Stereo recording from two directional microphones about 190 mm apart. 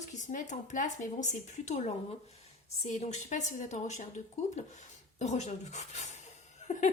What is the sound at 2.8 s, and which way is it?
A woman's voice, 35° left (ahead or behind).